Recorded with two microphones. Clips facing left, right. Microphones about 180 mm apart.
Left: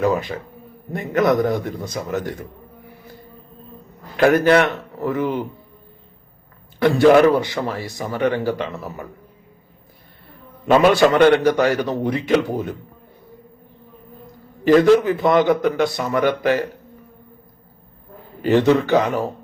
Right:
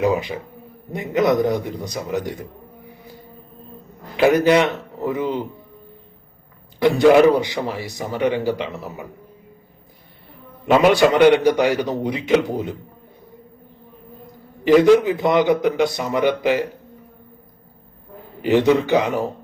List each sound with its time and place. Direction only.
0.0 s a man's voice: 15° right (ahead or behind)
2.9 s music: 15° right (ahead or behind)
4.4 s a man's voice: 20° right (ahead or behind)
6.7 s a man's voice: 15° right (ahead or behind)
10.7 s a man's voice: 15° right (ahead or behind)
14.6 s a man's voice: 15° right (ahead or behind)
18.4 s a man's voice: 15° right (ahead or behind)